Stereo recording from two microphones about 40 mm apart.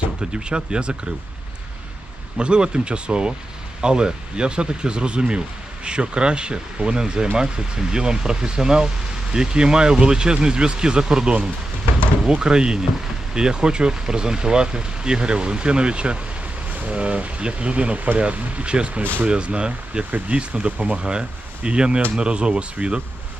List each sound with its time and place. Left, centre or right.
0.2 s speech: right
2.4 s speech: right
17.9 s speech: right
20.1 s speech: right
20.3 s speech: right
21.0 s speech: right